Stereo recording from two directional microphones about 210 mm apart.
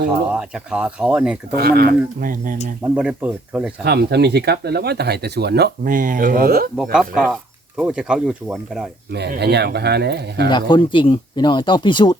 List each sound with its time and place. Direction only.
0.3 s speech: 5° right (ahead or behind)
1.5 s speech: 45° right (ahead or behind)
2.8 s speech: 5° right (ahead or behind)
3.8 s speech: 50° right (ahead or behind)
6.9 s speech: centre (ahead or behind)
9.1 s speech: 50° right (ahead or behind)
10.5 s speech: 25° left (ahead or behind)